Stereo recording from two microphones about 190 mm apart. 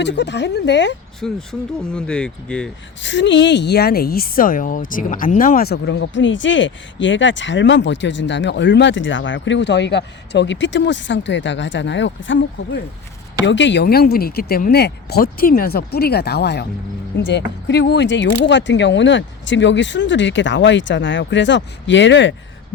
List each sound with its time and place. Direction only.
0.0 s speech: 65° left (ahead or behind)
1.2 s speech: 5° left (ahead or behind)
3.0 s speech: 70° left (ahead or behind)
13.8 s speech: 50° left (ahead or behind); by 22.4 s 70° left (ahead or behind)